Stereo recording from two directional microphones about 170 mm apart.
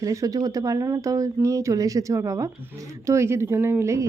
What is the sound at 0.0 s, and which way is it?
Speech, 20° right (ahead or behind).